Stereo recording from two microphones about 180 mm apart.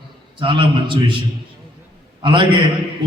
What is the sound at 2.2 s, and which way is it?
Speech, 25° right (ahead or behind).